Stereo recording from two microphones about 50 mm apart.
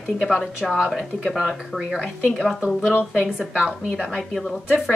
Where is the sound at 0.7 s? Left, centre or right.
Centre.